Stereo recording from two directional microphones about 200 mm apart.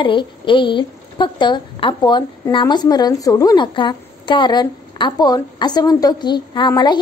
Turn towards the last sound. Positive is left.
turn(degrees=20)  # may be behind; listen again after turning